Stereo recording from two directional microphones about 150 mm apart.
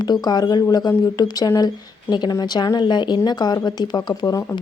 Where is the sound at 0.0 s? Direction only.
25° left (ahead or behind).